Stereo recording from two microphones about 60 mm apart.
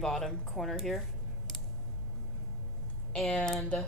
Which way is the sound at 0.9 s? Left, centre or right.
Centre.